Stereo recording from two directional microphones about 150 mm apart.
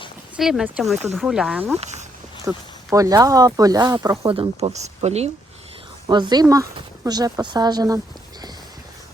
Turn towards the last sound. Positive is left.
turn(degrees=-25)  # may be behind; listen again after turning